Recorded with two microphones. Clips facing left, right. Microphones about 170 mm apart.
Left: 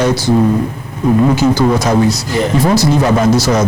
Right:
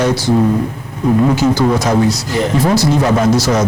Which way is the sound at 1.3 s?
30° left (ahead or behind).